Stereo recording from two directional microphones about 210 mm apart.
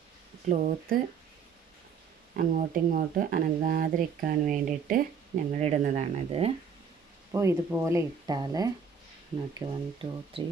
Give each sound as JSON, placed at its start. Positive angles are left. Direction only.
{"t": 0.4, "sound": "speech", "side_deg": -40}
{"t": 2.3, "sound": "speech", "side_deg": -40}
{"t": 7.3, "sound": "speech", "side_deg": -15}